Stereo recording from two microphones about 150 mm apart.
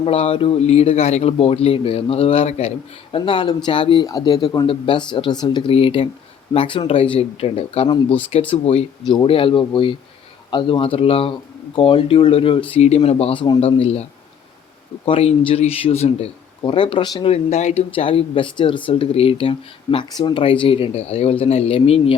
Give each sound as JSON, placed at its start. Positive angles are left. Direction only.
{"t": 0.0, "sound": "a man's voice", "side_deg": 40}
{"t": 17.3, "sound": "a man's voice", "side_deg": 45}